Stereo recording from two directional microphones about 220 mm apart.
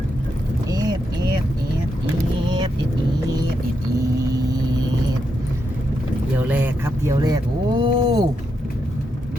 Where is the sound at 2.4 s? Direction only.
20° right (ahead or behind).